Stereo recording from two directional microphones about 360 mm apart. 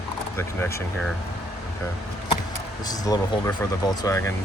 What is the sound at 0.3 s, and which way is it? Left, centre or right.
Speech, centre.